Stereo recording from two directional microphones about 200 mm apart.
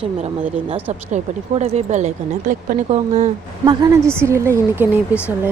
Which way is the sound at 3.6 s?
15° right (ahead or behind).